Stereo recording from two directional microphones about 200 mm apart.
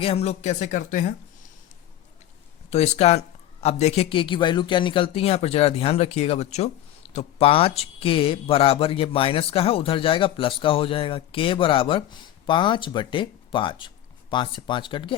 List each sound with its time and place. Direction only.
0.0 s speech: 30° left (ahead or behind)
2.6 s speech: 35° left (ahead or behind)